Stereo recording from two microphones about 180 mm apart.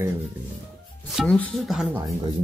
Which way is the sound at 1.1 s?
Centre (ahead or behind).